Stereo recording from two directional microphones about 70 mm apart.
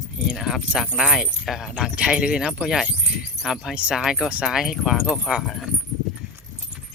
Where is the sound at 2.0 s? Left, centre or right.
Centre.